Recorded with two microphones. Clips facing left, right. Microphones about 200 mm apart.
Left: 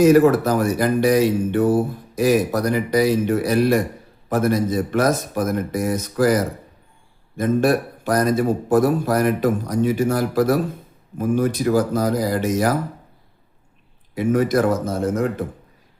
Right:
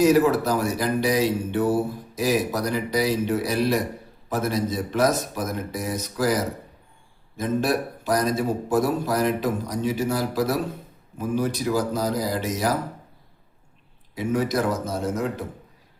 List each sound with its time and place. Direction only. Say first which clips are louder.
0.0 s speech: left 5 dB; 50° left (ahead or behind)
14.2 s speech: left 6 dB; 55° left (ahead or behind)